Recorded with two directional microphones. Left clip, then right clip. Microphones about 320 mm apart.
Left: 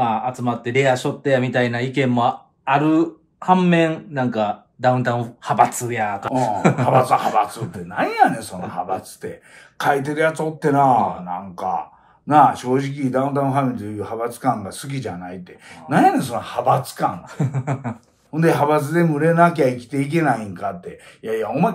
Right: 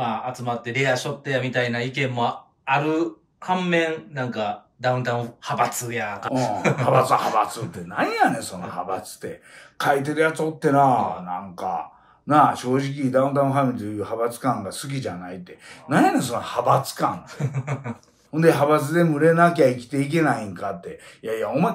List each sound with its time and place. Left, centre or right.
0.0 s speech: centre